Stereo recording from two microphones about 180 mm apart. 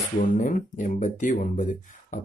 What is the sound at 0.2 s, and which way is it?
Speech, 45° left (ahead or behind).